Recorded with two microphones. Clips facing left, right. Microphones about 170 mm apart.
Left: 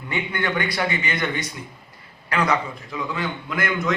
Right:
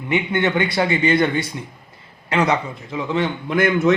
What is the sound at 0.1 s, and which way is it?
A man's voice, 25° right (ahead or behind).